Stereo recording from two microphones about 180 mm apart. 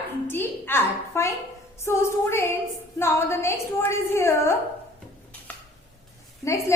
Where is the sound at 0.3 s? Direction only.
10° left (ahead or behind).